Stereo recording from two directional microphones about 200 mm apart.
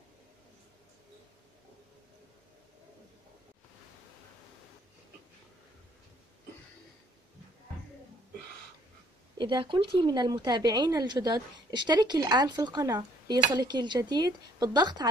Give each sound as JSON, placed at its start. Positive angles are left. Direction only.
{"t": 9.4, "sound": "speech", "side_deg": -25}